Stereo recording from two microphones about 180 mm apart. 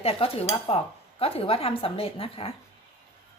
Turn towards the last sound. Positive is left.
turn(degrees=30)  # may be behind; listen again after turning